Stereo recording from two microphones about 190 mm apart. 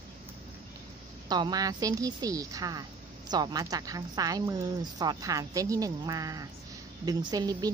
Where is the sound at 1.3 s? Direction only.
20° right (ahead or behind).